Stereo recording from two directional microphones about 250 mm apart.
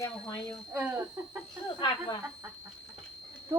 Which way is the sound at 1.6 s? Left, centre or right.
Centre.